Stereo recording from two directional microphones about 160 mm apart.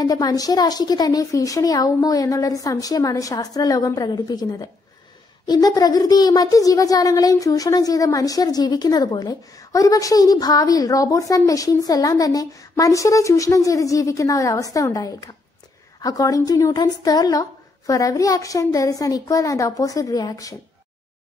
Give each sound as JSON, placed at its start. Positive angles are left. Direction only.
{"t": 0.0, "sound": "a child's voice", "side_deg": 25}